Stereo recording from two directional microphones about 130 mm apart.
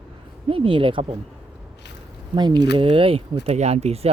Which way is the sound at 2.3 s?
35° right (ahead or behind).